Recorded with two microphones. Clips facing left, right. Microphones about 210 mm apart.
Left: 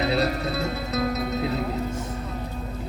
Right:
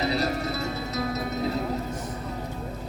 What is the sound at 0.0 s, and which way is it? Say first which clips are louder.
Music: left 2 dB; 60° left (ahead or behind).